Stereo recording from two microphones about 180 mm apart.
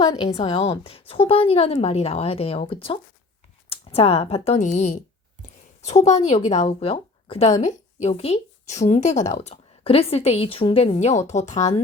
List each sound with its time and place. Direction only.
0.3 s speech: 30° left (ahead or behind)